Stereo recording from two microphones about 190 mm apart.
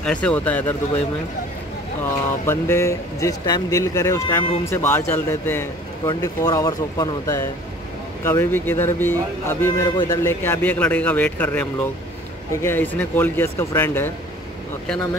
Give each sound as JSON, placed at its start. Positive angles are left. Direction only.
{"t": 0.0, "sound": "speech", "side_deg": 5}
{"t": 2.4, "sound": "speech", "side_deg": 15}
{"t": 12.6, "sound": "speech", "side_deg": 10}